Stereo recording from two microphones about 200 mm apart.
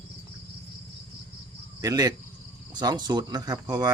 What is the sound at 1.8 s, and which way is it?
Cricket, 20° right (ahead or behind).